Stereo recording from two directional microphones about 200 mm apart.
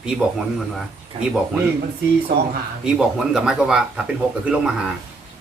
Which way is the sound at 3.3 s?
5° right (ahead or behind).